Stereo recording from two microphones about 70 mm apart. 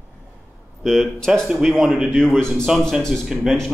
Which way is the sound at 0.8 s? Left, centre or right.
Centre.